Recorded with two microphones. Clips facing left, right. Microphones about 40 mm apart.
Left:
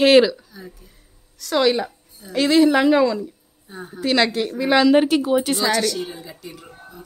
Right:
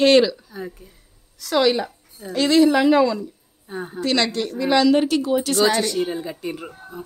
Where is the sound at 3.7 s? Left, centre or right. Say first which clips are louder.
Right 5 dB; right.